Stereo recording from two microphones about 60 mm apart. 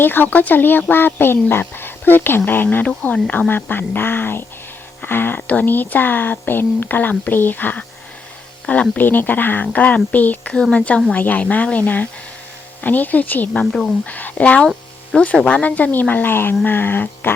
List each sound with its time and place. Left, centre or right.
0.0 s speech: left
2.8 s speech: left
5.4 s speech: left
9.0 s speech: left
10.5 s speech: centre
13.7 s speech: centre
14.0 s speech: left